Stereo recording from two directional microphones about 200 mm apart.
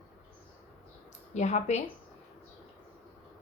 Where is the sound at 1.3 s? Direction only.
35° left (ahead or behind).